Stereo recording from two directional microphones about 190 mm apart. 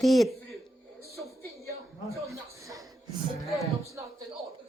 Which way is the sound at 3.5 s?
Centre (ahead or behind).